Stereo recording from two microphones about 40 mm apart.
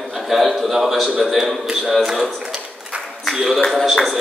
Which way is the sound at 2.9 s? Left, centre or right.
Right.